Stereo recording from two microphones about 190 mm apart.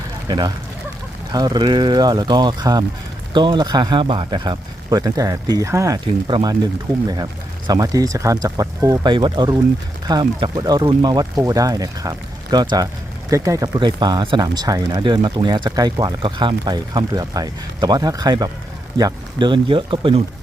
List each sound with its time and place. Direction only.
0.3 s speech: 20° right (ahead or behind)
7.7 s speech: 20° right (ahead or behind)